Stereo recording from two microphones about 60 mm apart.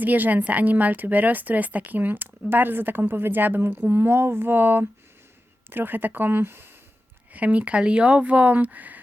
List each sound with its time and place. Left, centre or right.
0.0 s a woman's voice: right
7.3 s speech: right